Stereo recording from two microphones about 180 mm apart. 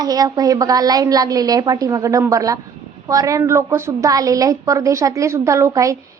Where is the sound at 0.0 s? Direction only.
20° right (ahead or behind).